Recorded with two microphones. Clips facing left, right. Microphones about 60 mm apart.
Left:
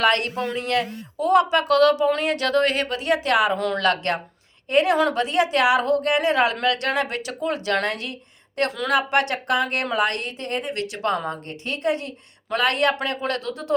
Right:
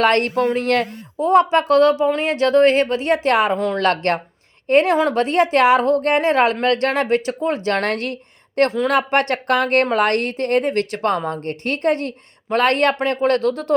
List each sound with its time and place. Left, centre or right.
0.0 s a woman's voice: right
1.1 s a woman's voice: right
8.9 s a woman's voice: right